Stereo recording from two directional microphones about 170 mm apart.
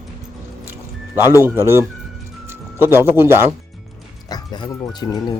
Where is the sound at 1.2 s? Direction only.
20° left (ahead or behind).